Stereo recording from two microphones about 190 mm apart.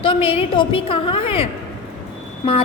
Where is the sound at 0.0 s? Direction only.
30° left (ahead or behind).